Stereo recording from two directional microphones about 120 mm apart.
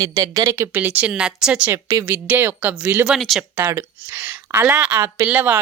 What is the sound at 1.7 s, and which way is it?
Speech, 25° right (ahead or behind).